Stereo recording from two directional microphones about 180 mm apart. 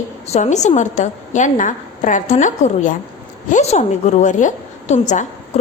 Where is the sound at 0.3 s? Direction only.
40° left (ahead or behind).